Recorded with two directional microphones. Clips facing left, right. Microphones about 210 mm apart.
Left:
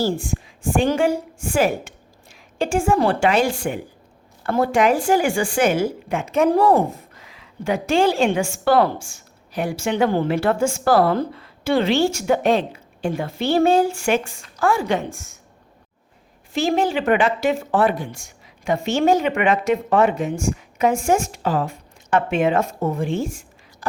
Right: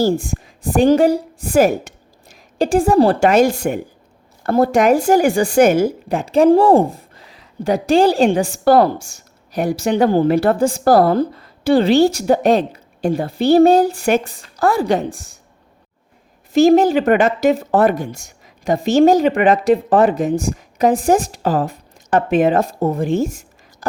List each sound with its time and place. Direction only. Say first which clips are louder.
0.0 s a woman's voice: right 5 dB; 45° right (ahead or behind)
16.5 s speech: right 9 dB; 40° right (ahead or behind)